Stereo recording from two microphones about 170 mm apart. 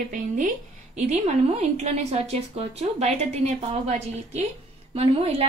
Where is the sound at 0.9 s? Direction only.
40° right (ahead or behind).